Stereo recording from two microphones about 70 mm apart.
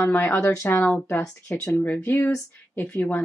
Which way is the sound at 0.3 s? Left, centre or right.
Left.